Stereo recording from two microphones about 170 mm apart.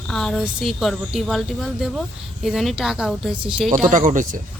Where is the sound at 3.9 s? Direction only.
50° right (ahead or behind).